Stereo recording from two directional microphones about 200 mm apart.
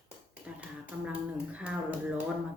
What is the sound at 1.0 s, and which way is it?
Speech, 5° right (ahead or behind).